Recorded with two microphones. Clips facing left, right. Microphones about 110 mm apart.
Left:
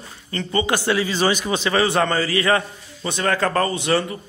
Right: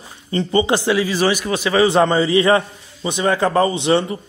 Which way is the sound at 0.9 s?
10° right (ahead or behind).